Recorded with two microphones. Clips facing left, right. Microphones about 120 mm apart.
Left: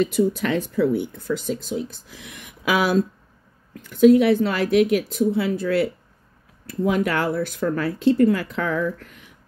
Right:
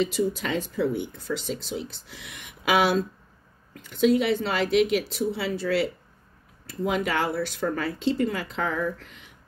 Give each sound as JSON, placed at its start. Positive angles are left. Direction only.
{"t": 0.0, "sound": "speech", "side_deg": 55}
{"t": 6.9, "sound": "speech", "side_deg": 50}